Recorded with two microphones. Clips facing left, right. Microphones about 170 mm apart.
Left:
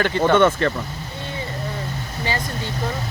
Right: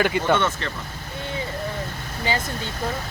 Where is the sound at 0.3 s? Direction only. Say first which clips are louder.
Left 8 dB; 55° left (ahead or behind).